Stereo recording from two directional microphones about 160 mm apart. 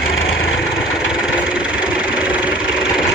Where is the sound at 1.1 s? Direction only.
5° right (ahead or behind).